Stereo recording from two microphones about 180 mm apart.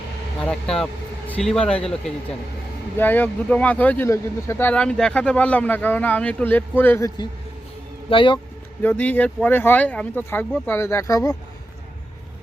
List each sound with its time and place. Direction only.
0.3 s speech: 5° left (ahead or behind)
3.0 s speech: 10° left (ahead or behind)
8.1 s speech: 30° left (ahead or behind)
8.8 s speech: 5° left (ahead or behind)